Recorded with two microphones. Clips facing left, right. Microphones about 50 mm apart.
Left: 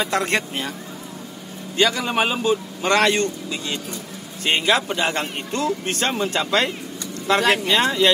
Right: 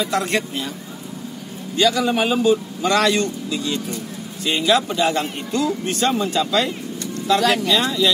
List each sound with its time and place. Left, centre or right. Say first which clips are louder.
0.0 s speech: even; left
1.8 s speech: right 2 dB; left
2.9 s speech: even; left